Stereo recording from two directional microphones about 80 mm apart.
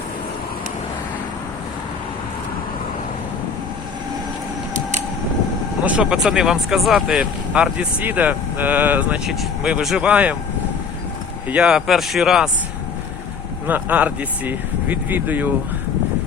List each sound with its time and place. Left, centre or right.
5.8 s speech: centre
7.2 s speech: centre
9.2 s speech: centre
11.4 s speech: centre
13.7 s speech: right